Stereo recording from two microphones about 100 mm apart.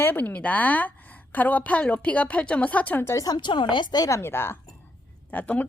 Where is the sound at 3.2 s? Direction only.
45° left (ahead or behind).